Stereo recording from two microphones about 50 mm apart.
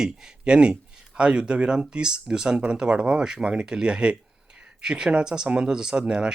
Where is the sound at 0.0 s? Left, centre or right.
Right.